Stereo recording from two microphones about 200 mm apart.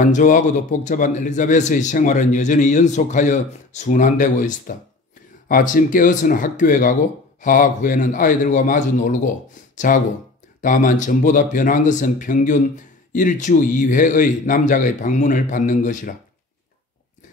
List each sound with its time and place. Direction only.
0.0 s a man's voice: 40° left (ahead or behind)